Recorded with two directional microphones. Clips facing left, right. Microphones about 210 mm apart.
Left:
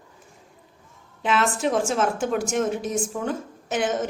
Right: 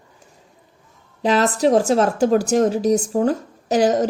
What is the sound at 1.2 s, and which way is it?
A woman's voice, 40° right (ahead or behind).